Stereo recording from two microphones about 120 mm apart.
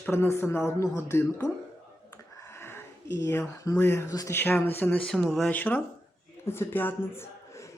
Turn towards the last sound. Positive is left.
turn(degrees=20)  # may be behind; listen again after turning